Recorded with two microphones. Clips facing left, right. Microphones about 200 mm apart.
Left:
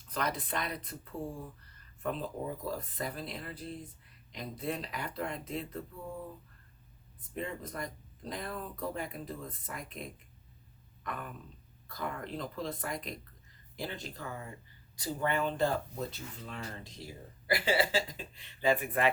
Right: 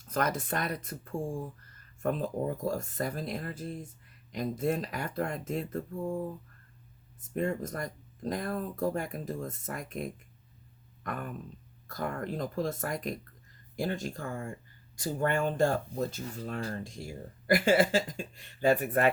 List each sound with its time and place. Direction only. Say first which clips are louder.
0.0 s speech: right 5 dB; 45° right (ahead or behind)
11.0 s a sound: right 4 dB; 50° right (ahead or behind)
11.9 s speech: right 4 dB; 45° right (ahead or behind)